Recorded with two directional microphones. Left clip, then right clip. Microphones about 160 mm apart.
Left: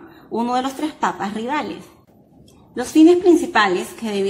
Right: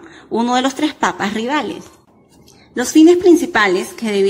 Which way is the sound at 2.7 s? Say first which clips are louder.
Right 3 dB; 25° right (ahead or behind).